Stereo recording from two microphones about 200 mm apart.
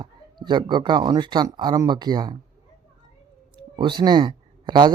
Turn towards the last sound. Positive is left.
turn(degrees=-25)  # may be behind; listen again after turning